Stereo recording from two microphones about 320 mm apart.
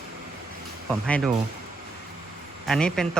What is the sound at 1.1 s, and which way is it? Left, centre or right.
Speech, centre.